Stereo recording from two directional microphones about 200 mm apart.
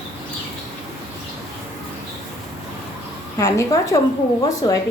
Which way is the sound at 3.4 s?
15° left (ahead or behind).